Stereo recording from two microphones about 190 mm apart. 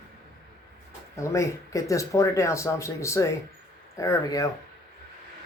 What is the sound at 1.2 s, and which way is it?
Speech, 15° left (ahead or behind).